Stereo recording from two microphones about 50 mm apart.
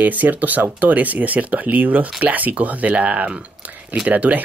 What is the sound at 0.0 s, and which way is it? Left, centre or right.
Speech, right.